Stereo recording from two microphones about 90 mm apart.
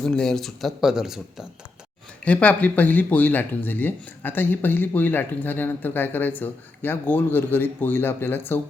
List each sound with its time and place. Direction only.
0.0 s speech: 10° left (ahead or behind)
2.2 s speech: 15° left (ahead or behind)